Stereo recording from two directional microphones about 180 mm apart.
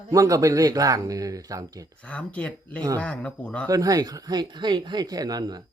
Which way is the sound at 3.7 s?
20° right (ahead or behind).